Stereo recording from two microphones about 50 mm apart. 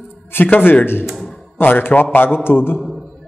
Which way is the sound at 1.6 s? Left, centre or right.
Left.